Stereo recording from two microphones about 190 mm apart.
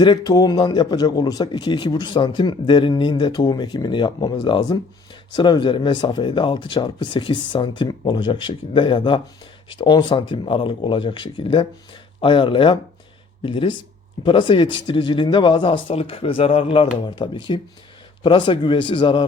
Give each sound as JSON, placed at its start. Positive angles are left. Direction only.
{"t": 0.0, "sound": "speech", "side_deg": 20}